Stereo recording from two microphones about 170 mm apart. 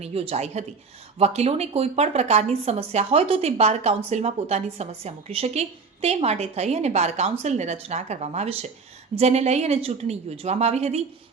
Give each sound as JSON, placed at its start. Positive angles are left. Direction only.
{"t": 0.0, "sound": "speech", "side_deg": -35}